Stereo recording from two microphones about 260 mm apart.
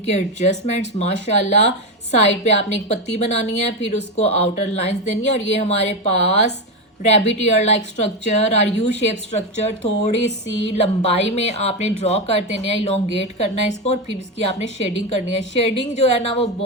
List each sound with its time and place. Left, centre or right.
0.1 s speech: left
10.2 s a sound: left
10.8 s speech: left